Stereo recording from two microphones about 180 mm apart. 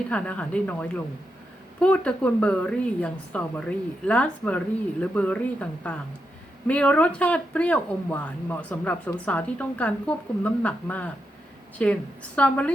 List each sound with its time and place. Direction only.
0.1 s speech: 5° left (ahead or behind)